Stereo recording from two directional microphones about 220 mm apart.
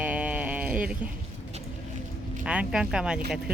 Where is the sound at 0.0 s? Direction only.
5° right (ahead or behind).